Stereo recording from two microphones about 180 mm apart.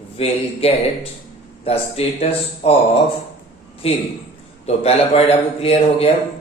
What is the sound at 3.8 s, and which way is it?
Speech, 35° left (ahead or behind).